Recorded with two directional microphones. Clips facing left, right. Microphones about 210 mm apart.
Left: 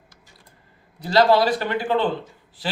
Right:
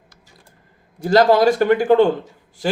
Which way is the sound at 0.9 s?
45° right (ahead or behind).